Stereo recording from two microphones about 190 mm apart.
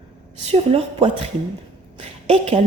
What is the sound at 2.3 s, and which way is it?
Speech, 35° right (ahead or behind).